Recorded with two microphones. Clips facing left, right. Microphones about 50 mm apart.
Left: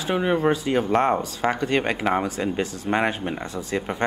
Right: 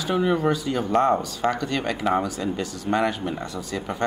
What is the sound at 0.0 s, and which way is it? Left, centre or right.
Speech, left.